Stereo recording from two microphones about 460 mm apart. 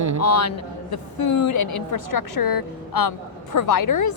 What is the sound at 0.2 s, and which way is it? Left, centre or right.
A woman's voice, left.